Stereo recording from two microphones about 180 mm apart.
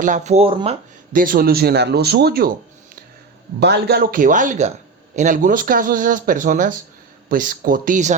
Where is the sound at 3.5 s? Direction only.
65° right (ahead or behind).